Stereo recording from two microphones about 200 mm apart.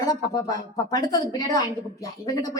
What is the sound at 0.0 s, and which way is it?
A woman's voice, 20° left (ahead or behind).